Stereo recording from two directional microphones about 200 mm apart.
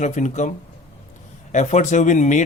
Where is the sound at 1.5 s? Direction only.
35° left (ahead or behind).